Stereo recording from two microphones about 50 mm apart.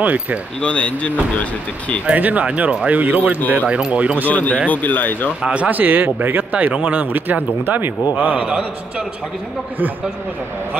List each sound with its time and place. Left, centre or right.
0.0 s speech: right
0.6 s speech: left
2.1 s speech: right
3.6 s speech: right
4.3 s speech: left
5.4 s speech: right
5.7 s speech: right
6.5 s speech: right
8.5 s speech: right